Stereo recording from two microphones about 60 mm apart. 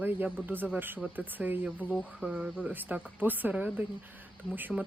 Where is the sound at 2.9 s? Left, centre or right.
Right.